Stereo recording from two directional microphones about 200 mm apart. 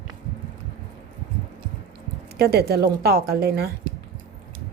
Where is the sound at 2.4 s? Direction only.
50° right (ahead or behind).